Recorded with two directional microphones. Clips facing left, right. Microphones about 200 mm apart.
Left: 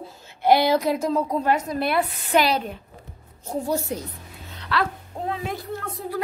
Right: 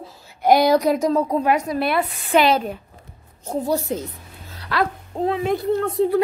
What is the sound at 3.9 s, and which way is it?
Speech, 25° right (ahead or behind).